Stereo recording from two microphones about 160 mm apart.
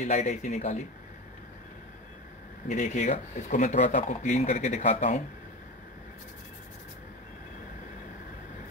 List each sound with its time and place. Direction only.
0.0 s speech: 45° left (ahead or behind)
2.7 s speech: 50° left (ahead or behind)